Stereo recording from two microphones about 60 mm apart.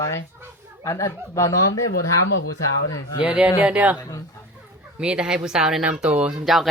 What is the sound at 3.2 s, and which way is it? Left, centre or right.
Speech, right.